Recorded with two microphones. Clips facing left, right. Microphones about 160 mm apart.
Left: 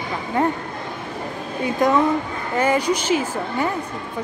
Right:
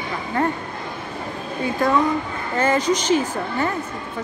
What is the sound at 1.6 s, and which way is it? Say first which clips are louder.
Speech: left 2 dB; 20° left (ahead or behind).